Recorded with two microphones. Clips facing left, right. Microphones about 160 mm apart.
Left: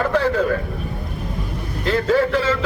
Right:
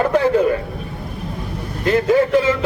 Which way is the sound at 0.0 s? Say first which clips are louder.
Right 4 dB; 20° right (ahead or behind).